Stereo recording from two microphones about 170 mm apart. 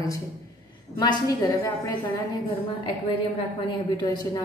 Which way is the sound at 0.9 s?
25° left (ahead or behind).